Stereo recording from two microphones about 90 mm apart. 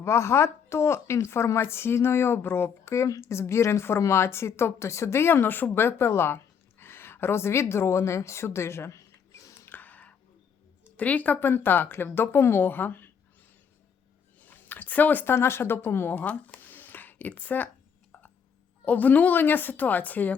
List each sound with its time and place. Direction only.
0.0 s a woman's voice: 30° left (ahead or behind)
9.6 s whispering: 20° left (ahead or behind)
10.9 s a woman's voice: 15° left (ahead or behind)
14.4 s speech: 20° left (ahead or behind)
18.9 s a woman's voice: 20° left (ahead or behind)